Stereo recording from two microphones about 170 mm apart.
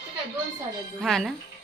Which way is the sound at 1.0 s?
Centre (ahead or behind).